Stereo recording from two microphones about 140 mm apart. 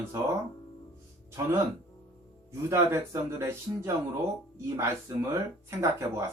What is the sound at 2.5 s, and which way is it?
Speech, 20° right (ahead or behind).